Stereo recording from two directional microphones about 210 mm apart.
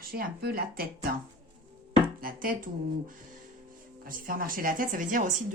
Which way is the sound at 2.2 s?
40° right (ahead or behind).